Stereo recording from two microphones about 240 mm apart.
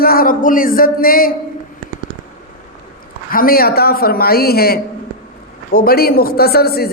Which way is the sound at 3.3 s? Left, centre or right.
Left.